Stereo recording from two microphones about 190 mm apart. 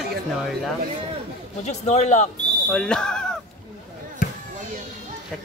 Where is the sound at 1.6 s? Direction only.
40° left (ahead or behind).